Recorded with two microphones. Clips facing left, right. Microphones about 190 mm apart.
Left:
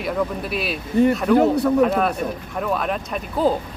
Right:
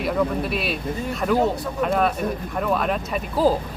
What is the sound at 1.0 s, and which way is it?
Speech, 65° left (ahead or behind).